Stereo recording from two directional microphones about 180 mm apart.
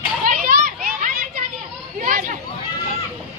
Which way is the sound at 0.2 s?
50° right (ahead or behind).